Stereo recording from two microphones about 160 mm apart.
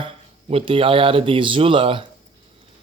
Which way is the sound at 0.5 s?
35° right (ahead or behind).